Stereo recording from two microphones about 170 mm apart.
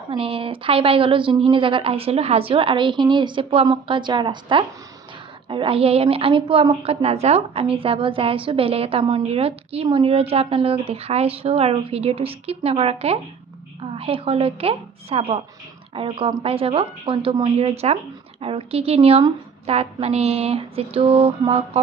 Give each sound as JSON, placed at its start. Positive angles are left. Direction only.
{"t": 0.1, "sound": "a woman's voice", "side_deg": -30}